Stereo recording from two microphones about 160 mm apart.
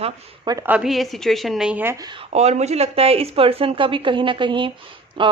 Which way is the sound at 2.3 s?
45° right (ahead or behind).